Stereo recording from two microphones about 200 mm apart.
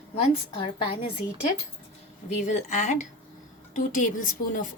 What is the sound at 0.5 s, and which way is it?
Speech, 30° left (ahead or behind).